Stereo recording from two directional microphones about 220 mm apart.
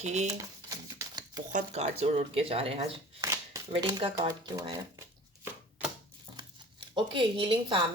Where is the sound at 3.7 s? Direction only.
20° right (ahead or behind).